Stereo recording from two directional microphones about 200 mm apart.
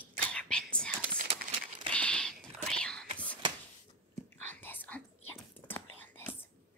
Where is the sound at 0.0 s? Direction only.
5° left (ahead or behind).